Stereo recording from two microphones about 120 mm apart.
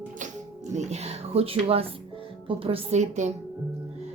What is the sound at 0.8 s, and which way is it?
A woman's voice, 65° right (ahead or behind).